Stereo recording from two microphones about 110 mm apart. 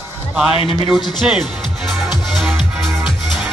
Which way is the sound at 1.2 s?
5° right (ahead or behind).